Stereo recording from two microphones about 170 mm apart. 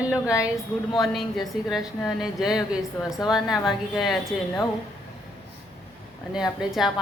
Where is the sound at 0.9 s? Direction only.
Centre (ahead or behind).